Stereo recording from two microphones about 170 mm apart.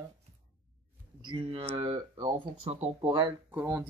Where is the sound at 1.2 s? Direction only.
30° right (ahead or behind).